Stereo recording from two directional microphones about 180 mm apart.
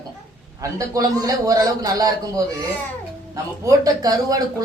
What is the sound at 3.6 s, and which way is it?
Speech, 20° right (ahead or behind).